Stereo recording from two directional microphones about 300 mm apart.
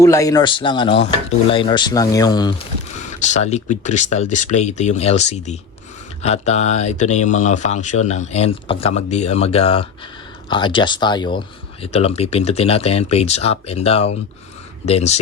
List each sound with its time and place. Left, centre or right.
0.0 s speech: centre
3.2 s speech: left